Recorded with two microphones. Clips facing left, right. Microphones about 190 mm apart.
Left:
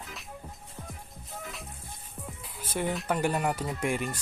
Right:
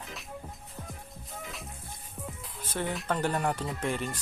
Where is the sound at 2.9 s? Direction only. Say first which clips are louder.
Even; 10° left (ahead or behind).